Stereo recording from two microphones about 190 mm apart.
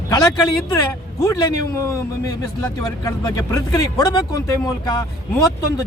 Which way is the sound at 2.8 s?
20° left (ahead or behind).